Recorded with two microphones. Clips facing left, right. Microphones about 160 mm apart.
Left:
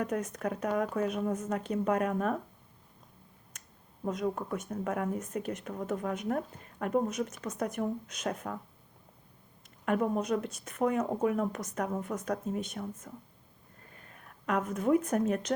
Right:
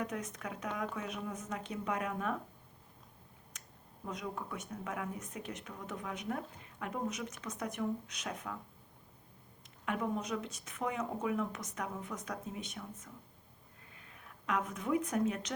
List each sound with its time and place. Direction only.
0.0 s speech: 50° left (ahead or behind)
4.0 s speech: 50° left (ahead or behind)
9.8 s a woman's voice: 50° left (ahead or behind)